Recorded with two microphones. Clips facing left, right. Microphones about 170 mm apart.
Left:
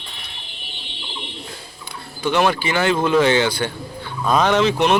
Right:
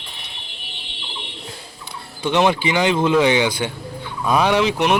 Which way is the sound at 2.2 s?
20° right (ahead or behind).